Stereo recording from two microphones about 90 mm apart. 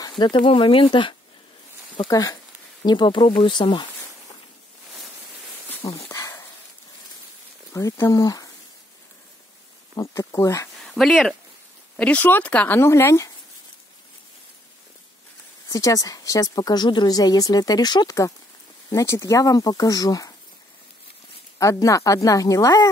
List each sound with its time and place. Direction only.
0.2 s speech: 65° left (ahead or behind)
2.0 s speech: 45° left (ahead or behind)
6.1 s a sound: 40° left (ahead or behind)
7.7 s speech: 40° left (ahead or behind)
9.9 s speech: 35° left (ahead or behind)
10.8 s speech: centre (ahead or behind)
12.0 s speech: 15° left (ahead or behind)
12.8 s speech: 30° left (ahead or behind)
15.7 s speech: 40° left (ahead or behind)
21.5 s speech: 35° left (ahead or behind)